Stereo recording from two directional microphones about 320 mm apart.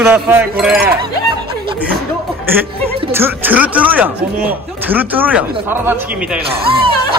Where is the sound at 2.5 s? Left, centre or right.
Centre.